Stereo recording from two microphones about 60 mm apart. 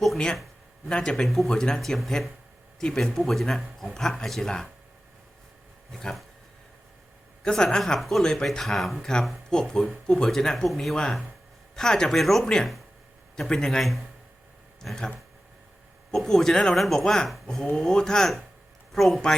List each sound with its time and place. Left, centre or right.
0.9 s speech: centre
1.2 s speech: centre
5.9 s speech: centre
7.4 s speech: centre
16.1 s speech: centre